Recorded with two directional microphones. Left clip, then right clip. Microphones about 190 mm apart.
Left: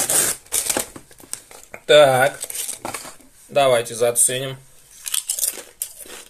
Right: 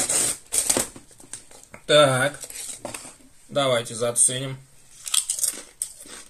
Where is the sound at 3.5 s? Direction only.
25° right (ahead or behind).